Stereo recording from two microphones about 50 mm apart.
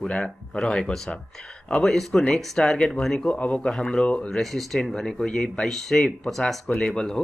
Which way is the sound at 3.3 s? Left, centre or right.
Left.